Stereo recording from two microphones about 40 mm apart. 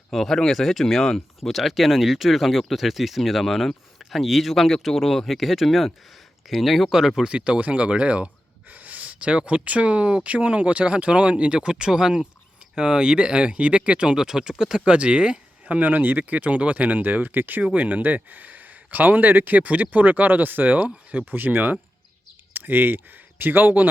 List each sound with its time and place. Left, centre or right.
0.1 s speech: centre
7.2 s speech: right
8.7 s speech: right; by 14.5 s centre
14.8 s speech: right
15.7 s speech: right
17.7 s a man's voice: right
19.6 s speech: right
21.2 s speech: right